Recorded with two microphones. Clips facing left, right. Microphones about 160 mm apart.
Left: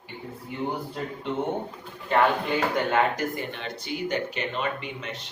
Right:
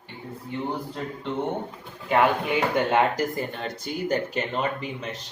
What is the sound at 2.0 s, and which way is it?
Speech, 10° right (ahead or behind).